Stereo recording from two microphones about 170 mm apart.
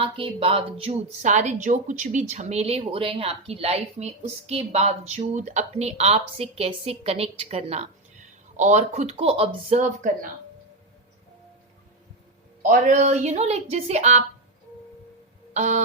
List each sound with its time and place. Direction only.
0.0 s a woman's voice: 30° right (ahead or behind); by 10.2 s 50° right (ahead or behind)
12.6 s a woman's voice: 50° right (ahead or behind)
15.5 s a woman's voice: 45° right (ahead or behind)